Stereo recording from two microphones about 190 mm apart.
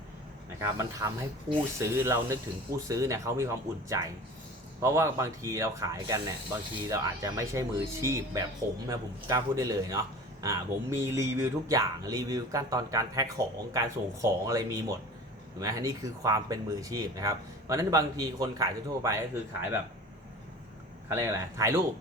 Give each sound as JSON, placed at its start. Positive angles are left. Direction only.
{"t": 0.6, "sound": "speech", "side_deg": -15}
{"t": 21.1, "sound": "speech", "side_deg": -15}